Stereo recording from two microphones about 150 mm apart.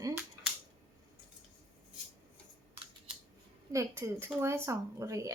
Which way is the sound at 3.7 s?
20° right (ahead or behind).